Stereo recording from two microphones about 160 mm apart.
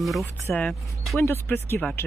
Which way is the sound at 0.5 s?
5° left (ahead or behind).